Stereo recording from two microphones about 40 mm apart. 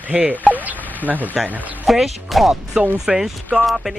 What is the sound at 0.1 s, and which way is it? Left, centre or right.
Speech, right.